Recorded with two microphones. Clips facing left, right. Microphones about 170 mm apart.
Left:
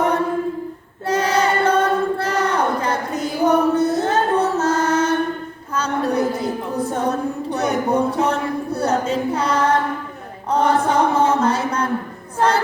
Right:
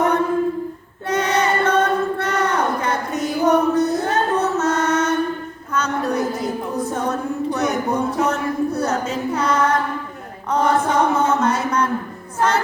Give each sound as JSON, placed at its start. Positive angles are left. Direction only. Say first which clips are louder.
{"t": 1.0, "sound": "choir", "louder": "left 1 dB", "side_deg": 30}
{"t": 5.7, "sound": "a sound", "louder": "left 1 dB", "side_deg": 30}
{"t": 7.9, "sound": "chant", "louder": "left 2 dB", "side_deg": 30}
{"t": 12.4, "sound": "music", "louder": "left 1 dB", "side_deg": 30}